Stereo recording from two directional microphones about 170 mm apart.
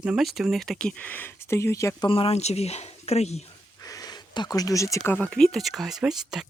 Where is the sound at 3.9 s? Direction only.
20° left (ahead or behind); by 6.5 s 5° right (ahead or behind).